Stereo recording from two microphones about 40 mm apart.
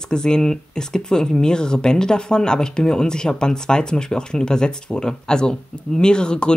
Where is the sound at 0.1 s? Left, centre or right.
Centre.